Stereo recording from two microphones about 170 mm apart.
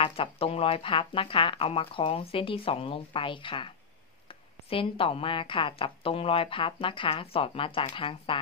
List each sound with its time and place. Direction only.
0.0 s a woman's voice: 35° left (ahead or behind)